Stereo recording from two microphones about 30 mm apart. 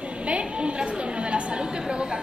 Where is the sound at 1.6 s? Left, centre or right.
Right.